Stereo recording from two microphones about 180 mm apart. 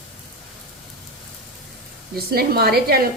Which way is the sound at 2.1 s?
60° right (ahead or behind).